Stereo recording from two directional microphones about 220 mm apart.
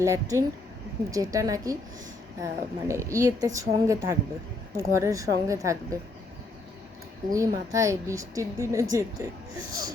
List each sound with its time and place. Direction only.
0.0 s speech: 15° right (ahead or behind)
7.3 s speech: 15° right (ahead or behind)